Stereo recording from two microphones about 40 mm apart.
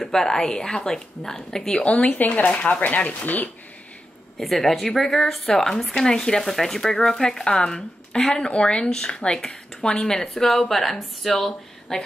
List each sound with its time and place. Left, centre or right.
0.0 s speech: centre
1.8 s speech: left
2.0 s speech: left
4.4 s speech: centre
6.4 s speech: centre